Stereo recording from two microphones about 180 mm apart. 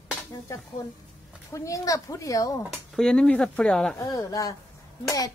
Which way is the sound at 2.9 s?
5° left (ahead or behind).